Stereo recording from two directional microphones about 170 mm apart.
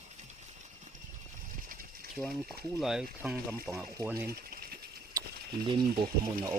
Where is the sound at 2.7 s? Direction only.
Centre (ahead or behind).